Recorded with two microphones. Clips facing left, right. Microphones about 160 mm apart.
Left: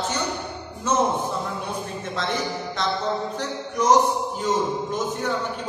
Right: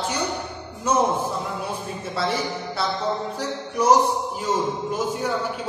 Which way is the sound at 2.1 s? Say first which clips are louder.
Right 2 dB; 10° right (ahead or behind).